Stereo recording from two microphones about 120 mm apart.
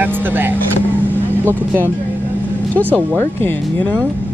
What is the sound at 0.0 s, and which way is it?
Speech, 15° right (ahead or behind).